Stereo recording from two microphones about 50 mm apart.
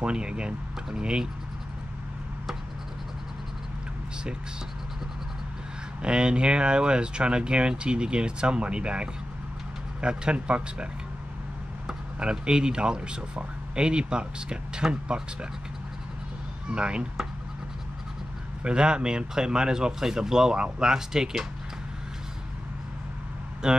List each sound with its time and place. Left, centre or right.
0.0 s speech: centre
6.0 s speech: centre
11.9 s speech: centre
16.7 s speech: centre
18.6 s speech: centre
23.6 s speech: centre